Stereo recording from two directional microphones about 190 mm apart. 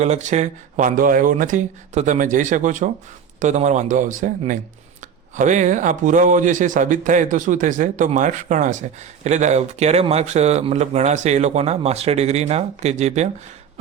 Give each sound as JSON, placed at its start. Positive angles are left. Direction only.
{"t": 0.0, "sound": "speech", "side_deg": -40}